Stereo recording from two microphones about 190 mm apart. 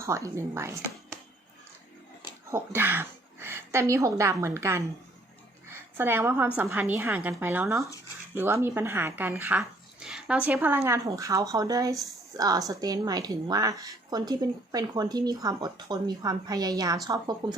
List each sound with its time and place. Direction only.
0.0 s speech: 15° right (ahead or behind)
2.2 s a woman's voice: 10° right (ahead or behind)